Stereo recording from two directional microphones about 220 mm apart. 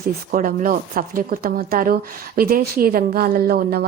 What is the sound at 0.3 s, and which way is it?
Speech, 40° right (ahead or behind).